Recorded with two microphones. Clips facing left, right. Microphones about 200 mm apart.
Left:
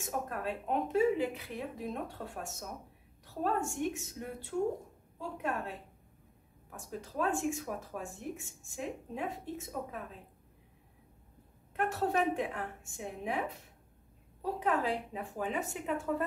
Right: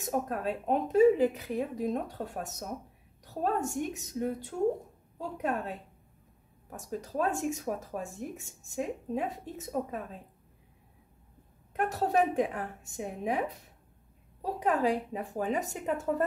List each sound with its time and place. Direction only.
0.0 s speech: 40° right (ahead or behind)
6.7 s speech: 40° right (ahead or behind)
11.7 s speech: 35° right (ahead or behind)